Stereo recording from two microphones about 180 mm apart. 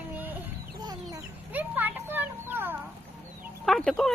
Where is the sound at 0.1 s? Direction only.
10° right (ahead or behind).